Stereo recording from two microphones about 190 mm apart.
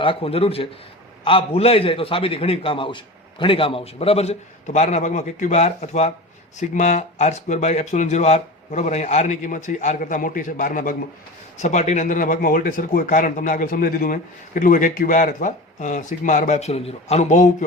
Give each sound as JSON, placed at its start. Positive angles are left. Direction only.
{"t": 0.0, "sound": "a man's voice", "side_deg": 30}